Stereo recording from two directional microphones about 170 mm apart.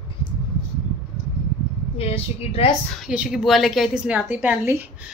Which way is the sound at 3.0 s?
5° right (ahead or behind).